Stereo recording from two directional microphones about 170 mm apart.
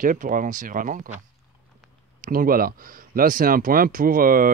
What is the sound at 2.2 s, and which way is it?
Speech, 55° right (ahead or behind).